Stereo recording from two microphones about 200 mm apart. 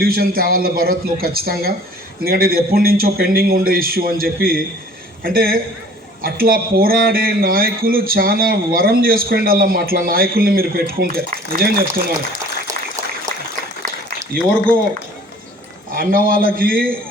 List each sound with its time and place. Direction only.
0.0 s a man's voice: 50° right (ahead or behind)
13.3 s applause: 45° right (ahead or behind)
16.0 s a man's voice: 45° right (ahead or behind)